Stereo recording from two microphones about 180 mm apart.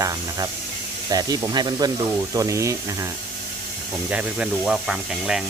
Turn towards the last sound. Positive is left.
turn(degrees=-5)  # may be behind; listen again after turning